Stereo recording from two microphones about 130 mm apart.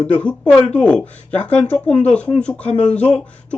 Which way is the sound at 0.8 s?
10° left (ahead or behind).